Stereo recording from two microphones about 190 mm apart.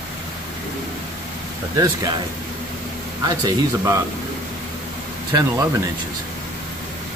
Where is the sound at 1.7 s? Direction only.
20° right (ahead or behind).